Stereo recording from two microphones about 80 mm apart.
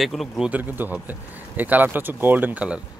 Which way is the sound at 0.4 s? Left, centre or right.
Right.